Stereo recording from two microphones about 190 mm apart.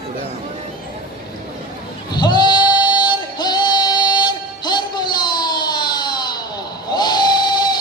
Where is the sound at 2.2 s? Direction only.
25° left (ahead or behind).